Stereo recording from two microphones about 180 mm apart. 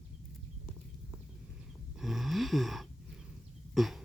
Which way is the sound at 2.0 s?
Centre (ahead or behind).